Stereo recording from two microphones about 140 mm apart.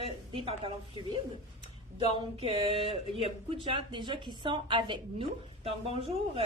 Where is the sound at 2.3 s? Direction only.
40° right (ahead or behind).